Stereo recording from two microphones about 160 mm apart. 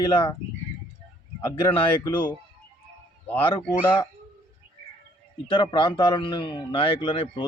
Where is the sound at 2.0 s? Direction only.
15° left (ahead or behind).